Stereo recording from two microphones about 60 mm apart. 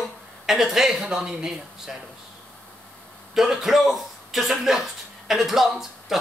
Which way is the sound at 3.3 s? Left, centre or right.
Centre.